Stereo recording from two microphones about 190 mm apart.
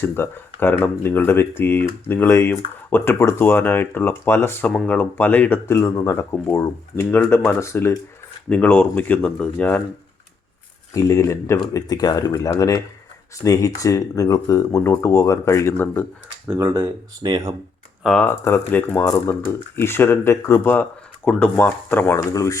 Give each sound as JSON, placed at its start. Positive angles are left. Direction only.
{"t": 0.0, "sound": "speech", "side_deg": 10}
{"t": 10.9, "sound": "speech", "side_deg": 15}
{"t": 16.5, "sound": "speech", "side_deg": -10}
{"t": 18.0, "sound": "speech", "side_deg": 5}